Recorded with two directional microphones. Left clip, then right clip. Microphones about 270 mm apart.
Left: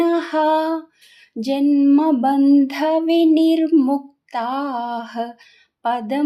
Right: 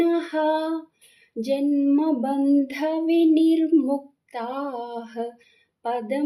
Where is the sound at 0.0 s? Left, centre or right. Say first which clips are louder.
Left 4 dB; centre.